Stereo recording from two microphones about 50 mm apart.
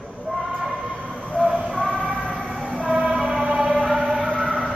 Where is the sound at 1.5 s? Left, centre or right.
Right.